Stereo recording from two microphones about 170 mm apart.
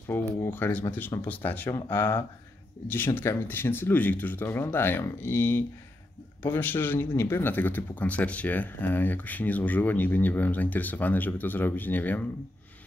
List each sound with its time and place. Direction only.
0.1 s speech: 10° left (ahead or behind)